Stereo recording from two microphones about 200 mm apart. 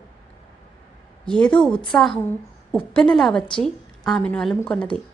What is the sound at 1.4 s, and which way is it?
A woman's voice, 5° left (ahead or behind).